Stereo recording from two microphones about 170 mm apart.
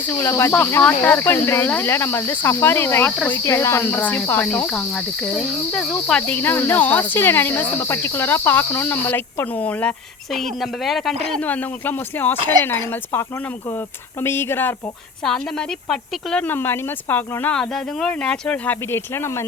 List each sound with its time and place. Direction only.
0.0 s cricket: 15° left (ahead or behind)
10.3 s speech: centre (ahead or behind)
11.3 s cricket: 10° left (ahead or behind)